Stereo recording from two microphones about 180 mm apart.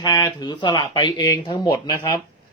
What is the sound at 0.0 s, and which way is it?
Speech, 20° left (ahead or behind).